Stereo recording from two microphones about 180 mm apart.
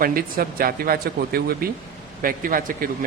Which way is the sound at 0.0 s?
55° right (ahead or behind).